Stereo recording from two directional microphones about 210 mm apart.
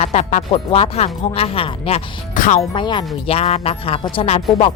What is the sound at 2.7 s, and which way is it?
A woman's voice, 20° left (ahead or behind).